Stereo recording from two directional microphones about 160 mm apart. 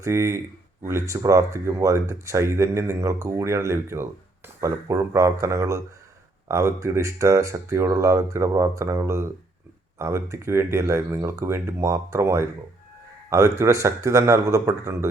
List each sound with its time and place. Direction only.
0.0 s speech: 15° right (ahead or behind)